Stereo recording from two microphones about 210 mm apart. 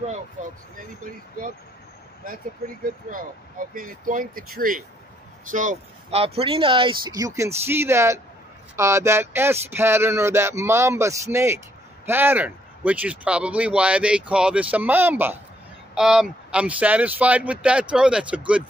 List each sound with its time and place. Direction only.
3.1 s speech: 40° right (ahead or behind); by 18.4 s 5° right (ahead or behind)